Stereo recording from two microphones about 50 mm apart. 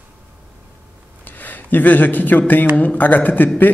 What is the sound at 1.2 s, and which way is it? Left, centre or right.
Speech, left.